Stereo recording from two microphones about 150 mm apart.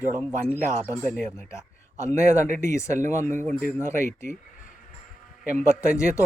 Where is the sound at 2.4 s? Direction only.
55° right (ahead or behind).